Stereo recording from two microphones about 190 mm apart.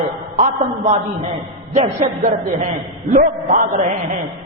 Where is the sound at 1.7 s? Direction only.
35° right (ahead or behind).